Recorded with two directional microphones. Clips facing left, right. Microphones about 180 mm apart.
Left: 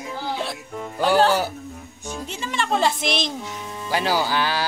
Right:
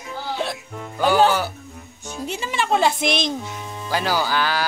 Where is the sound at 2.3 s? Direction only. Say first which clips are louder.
Right 3 dB; 10° right (ahead or behind).